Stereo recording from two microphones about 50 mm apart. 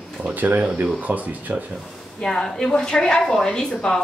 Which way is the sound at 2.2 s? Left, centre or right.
Centre.